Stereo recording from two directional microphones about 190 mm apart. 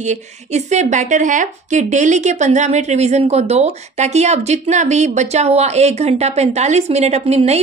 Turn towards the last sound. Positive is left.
turn(degrees=-35)  # may be behind; listen again after turning